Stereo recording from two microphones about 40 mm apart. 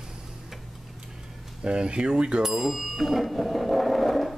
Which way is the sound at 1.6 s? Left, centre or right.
Right.